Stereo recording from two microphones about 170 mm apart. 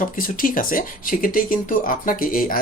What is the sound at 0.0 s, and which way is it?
Speech, 55° left (ahead or behind).